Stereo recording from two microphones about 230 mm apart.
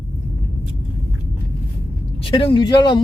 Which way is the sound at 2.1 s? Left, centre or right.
Left.